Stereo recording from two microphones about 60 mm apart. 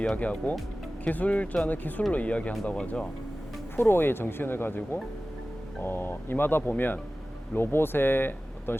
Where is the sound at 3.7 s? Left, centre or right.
Left.